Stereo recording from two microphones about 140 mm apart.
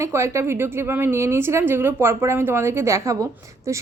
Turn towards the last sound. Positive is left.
turn(degrees=-20)  # may be behind; listen again after turning